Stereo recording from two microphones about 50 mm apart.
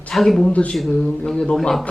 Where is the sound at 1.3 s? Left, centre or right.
Centre.